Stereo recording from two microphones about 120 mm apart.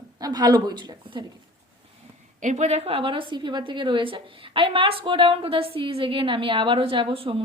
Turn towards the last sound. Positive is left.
turn(degrees=-50)  # may be behind; listen again after turning